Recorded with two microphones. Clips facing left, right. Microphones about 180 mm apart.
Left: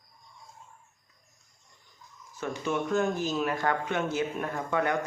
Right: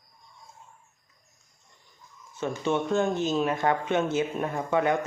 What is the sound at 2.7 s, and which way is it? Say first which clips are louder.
Speech: right 2 dB; 25° right (ahead or behind).